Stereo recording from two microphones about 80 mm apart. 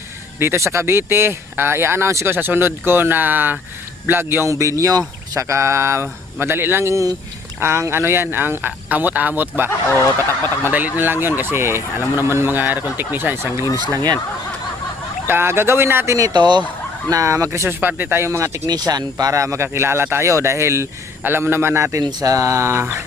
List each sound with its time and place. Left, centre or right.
0.3 s speech: right
10.7 s speech: right
13.7 s speech: right
15.3 s speech: right
16.1 s speech: right
16.4 s fowl: right
17.1 s speech: right
18.3 s speech: right
18.7 s speech: right
22.2 s speech: right